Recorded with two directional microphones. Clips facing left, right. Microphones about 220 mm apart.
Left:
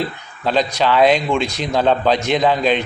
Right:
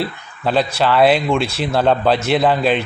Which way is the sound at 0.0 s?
10° right (ahead or behind).